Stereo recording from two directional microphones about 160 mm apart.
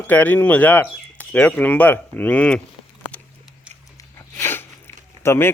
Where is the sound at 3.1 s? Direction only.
10° left (ahead or behind).